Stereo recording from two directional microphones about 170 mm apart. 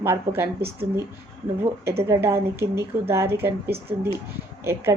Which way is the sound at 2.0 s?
15° right (ahead or behind).